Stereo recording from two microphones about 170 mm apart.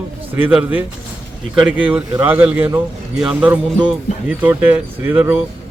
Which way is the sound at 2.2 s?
10° right (ahead or behind).